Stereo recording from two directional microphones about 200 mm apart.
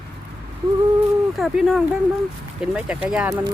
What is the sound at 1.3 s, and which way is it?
Speech, centre (ahead or behind).